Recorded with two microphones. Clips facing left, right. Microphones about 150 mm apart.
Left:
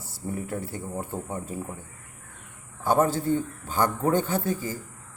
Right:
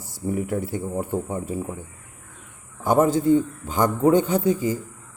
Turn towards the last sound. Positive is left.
turn(degrees=-15)  # may be behind; listen again after turning